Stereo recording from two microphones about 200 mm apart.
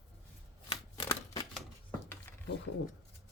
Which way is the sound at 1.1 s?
15° left (ahead or behind).